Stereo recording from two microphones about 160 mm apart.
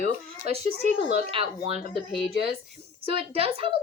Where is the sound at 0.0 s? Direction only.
40° right (ahead or behind).